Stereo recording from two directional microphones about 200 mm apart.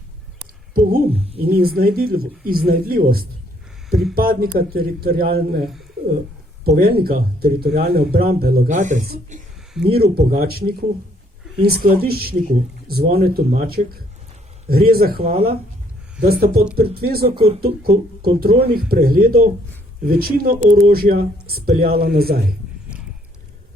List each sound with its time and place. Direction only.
0.7 s speech: 45° right (ahead or behind)
6.7 s speech: 50° right (ahead or behind)
9.8 s speech: 50° right (ahead or behind)
15.2 s speech: 30° right (ahead or behind)
16.2 s speech: 50° right (ahead or behind)
17.3 s speech: 30° right (ahead or behind)
17.6 s speech: 50° right (ahead or behind)